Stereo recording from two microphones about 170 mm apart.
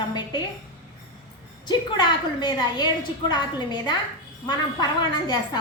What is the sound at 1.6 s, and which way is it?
A woman's voice, 25° left (ahead or behind).